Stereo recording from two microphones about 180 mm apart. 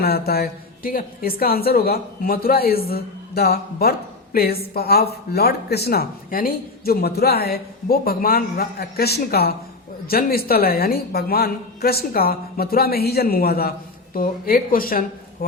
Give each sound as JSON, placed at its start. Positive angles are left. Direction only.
{"t": 0.0, "sound": "a woman's voice", "side_deg": 60}